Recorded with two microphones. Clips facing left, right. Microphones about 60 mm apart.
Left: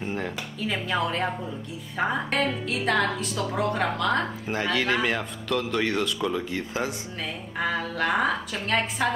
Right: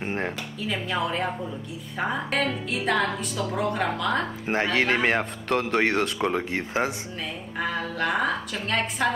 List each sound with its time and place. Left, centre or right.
0.0 s a sound: right
0.7 s a woman's voice: centre
4.7 s a man's voice: right
7.5 s a woman's voice: centre